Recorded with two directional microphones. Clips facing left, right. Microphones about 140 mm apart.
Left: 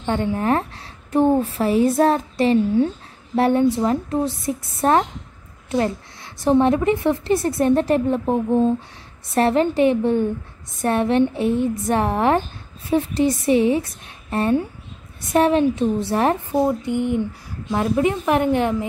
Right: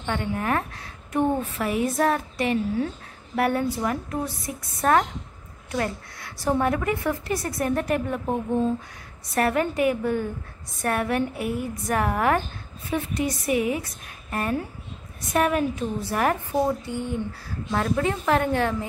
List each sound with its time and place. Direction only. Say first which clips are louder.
0.0 s a woman's voice: left 6 dB; 30° left (ahead or behind)